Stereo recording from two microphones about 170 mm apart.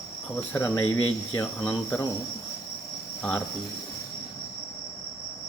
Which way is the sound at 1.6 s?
10° left (ahead or behind).